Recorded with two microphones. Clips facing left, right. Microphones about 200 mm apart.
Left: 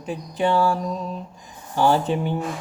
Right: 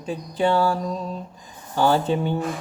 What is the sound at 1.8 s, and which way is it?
Mantra, 30° right (ahead or behind).